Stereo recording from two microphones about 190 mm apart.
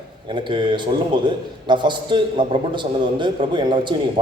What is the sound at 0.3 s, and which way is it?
A man's voice, 25° right (ahead or behind).